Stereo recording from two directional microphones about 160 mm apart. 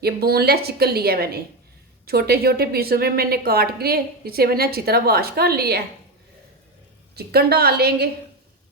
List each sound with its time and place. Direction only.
0.0 s a woman's voice: 75° right (ahead or behind)
7.2 s a woman's voice: 85° right